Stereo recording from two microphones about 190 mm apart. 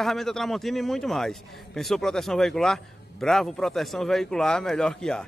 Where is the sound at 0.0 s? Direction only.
Centre (ahead or behind).